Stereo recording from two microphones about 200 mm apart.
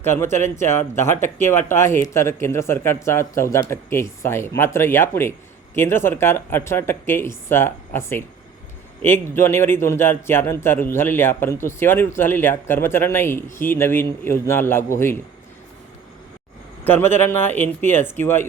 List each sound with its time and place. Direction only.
0.0 s a man's voice: 10° left (ahead or behind)
16.8 s a man's voice: 10° left (ahead or behind)